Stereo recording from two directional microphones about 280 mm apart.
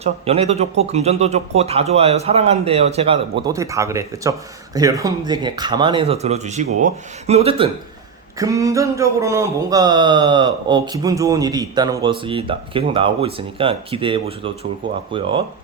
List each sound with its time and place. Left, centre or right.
0.0 s speech: right